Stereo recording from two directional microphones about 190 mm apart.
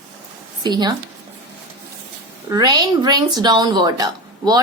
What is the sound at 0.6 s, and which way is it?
Speech, 20° right (ahead or behind).